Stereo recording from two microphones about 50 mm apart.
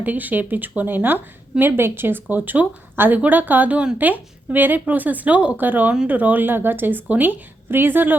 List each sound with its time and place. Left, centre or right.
0.0 s a woman's voice: right
5.5 s a woman's voice: right